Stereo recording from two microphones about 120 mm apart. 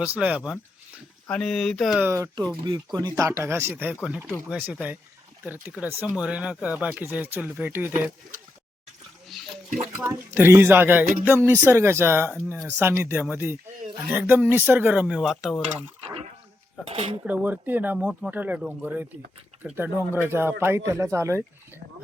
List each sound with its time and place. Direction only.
0.0 s speech: 10° right (ahead or behind)
1.3 s speech: 5° left (ahead or behind)
2.0 s speech: 20° right (ahead or behind)
2.6 s speech: 35° right (ahead or behind)
3.2 s speech: 25° right (ahead or behind)
9.2 s a sound: centre (ahead or behind)
10.0 s speech: 20° right (ahead or behind); by 15.6 s 5° right (ahead or behind)
16.8 s speech: 55° right (ahead or behind)
17.2 s speech: 15° right (ahead or behind)